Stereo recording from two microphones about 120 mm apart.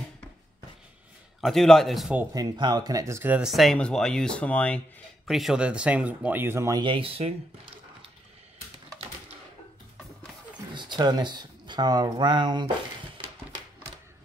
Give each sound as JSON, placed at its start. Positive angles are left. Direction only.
{"t": 1.4, "sound": "a man's voice", "side_deg": 5}
{"t": 2.3, "sound": "speech", "side_deg": -35}
{"t": 3.3, "sound": "speech", "side_deg": 0}
{"t": 5.2, "sound": "speech", "side_deg": -5}
{"t": 6.8, "sound": "speech", "side_deg": -45}
{"t": 10.7, "sound": "speech", "side_deg": -40}